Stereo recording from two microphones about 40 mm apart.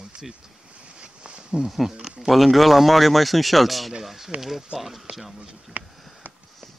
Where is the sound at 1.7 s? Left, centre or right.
Centre.